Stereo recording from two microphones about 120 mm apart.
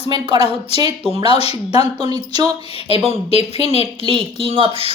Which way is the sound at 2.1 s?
35° right (ahead or behind).